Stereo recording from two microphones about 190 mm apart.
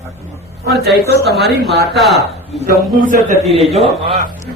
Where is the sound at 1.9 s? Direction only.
Centre (ahead or behind).